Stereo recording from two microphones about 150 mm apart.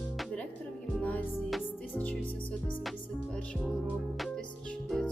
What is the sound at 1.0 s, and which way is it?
Music, 10° left (ahead or behind).